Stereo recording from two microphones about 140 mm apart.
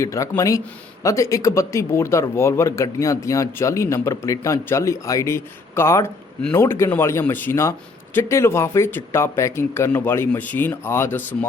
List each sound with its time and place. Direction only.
0.0 s a man's voice: 20° left (ahead or behind)